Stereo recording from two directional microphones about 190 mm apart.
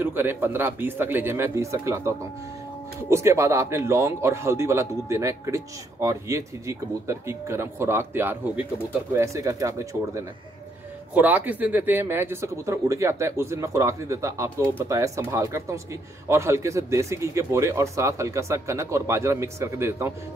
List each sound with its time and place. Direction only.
0.0 s speech: 10° right (ahead or behind)